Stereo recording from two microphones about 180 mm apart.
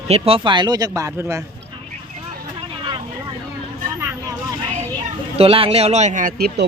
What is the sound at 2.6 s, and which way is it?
Vehicle, 25° right (ahead or behind).